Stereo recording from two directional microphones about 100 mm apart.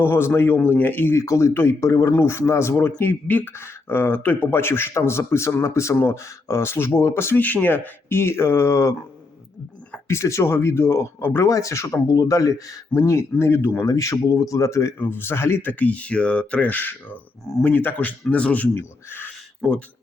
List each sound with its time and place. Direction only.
0.0 s speech: 25° left (ahead or behind)
10.1 s speech: 30° left (ahead or behind)
11.4 s speech: 35° left (ahead or behind)
13.8 s speech: 35° left (ahead or behind)